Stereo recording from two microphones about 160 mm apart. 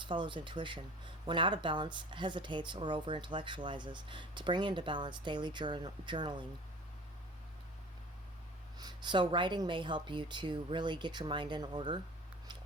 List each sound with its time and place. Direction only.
0.0 s speech: 30° right (ahead or behind)
8.8 s speech: 25° right (ahead or behind)